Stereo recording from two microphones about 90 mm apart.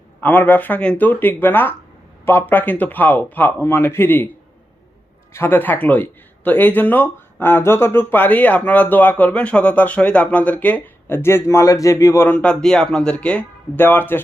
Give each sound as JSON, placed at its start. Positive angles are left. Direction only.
{"t": 0.2, "sound": "speech", "side_deg": 20}
{"t": 5.3, "sound": "speech", "side_deg": 25}
{"t": 12.3, "sound": "speech", "side_deg": 15}